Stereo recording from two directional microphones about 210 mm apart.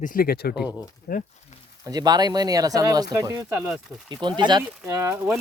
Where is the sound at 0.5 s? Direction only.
5° right (ahead or behind).